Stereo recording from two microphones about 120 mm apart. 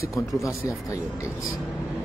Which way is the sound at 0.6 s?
25° left (ahead or behind).